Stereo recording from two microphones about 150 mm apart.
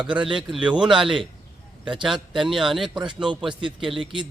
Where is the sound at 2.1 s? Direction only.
5° right (ahead or behind).